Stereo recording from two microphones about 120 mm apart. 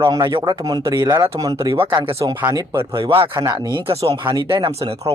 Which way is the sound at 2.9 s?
50° right (ahead or behind).